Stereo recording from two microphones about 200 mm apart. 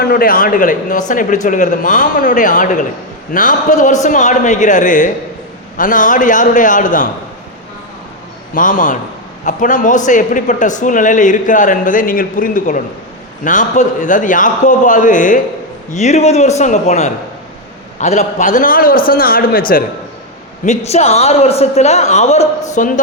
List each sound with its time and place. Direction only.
0.0 s a man's voice: 45° left (ahead or behind)
8.5 s a man's voice: 40° left (ahead or behind)
20.7 s a man's voice: 30° left (ahead or behind)